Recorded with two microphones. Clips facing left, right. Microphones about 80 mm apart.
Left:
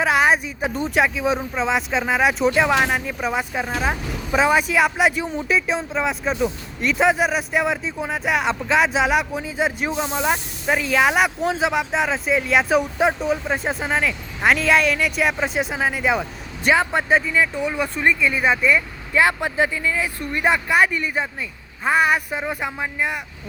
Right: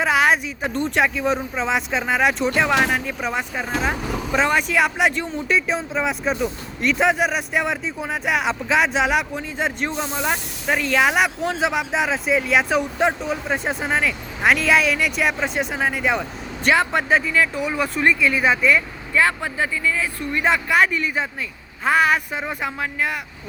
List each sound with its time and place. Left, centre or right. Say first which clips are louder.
0.0 s speech: even; centre
19.1 s speech: left 2 dB; left
19.7 s speech: right 1 dB; left
20.0 s speech: even; centre